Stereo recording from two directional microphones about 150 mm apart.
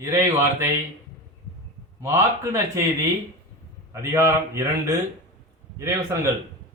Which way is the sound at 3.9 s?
20° right (ahead or behind).